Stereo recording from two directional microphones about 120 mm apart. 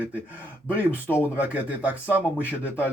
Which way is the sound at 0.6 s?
15° left (ahead or behind).